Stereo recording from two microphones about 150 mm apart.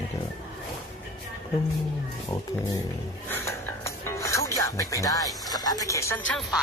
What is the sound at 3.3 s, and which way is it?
Music, 15° left (ahead or behind).